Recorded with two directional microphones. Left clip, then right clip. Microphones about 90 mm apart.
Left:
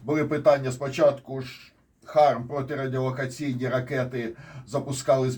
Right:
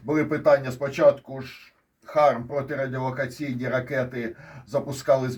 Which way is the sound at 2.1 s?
15° left (ahead or behind).